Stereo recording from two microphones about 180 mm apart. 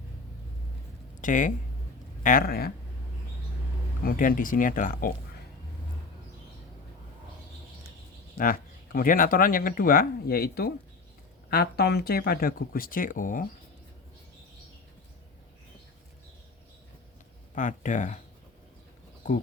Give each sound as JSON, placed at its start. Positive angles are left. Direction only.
{"t": 1.2, "sound": "speech", "side_deg": 45}
{"t": 4.0, "sound": "speech", "side_deg": 50}
{"t": 8.4, "sound": "speech", "side_deg": 50}
{"t": 17.5, "sound": "speech", "side_deg": 45}